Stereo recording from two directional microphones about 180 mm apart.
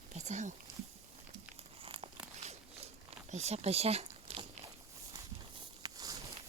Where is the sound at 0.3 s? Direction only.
40° right (ahead or behind).